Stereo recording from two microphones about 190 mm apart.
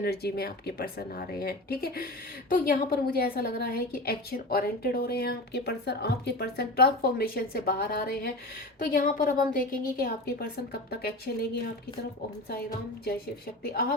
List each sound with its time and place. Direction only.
0.0 s a woman's voice: 55° left (ahead or behind)